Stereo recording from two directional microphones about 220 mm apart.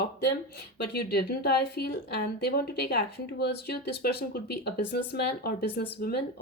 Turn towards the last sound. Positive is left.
turn(degrees=45)  # may be behind; listen again after turning